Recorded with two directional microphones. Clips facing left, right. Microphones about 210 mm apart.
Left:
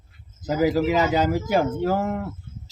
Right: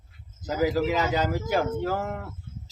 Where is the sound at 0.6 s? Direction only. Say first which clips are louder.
Left 4 dB; 10° left (ahead or behind).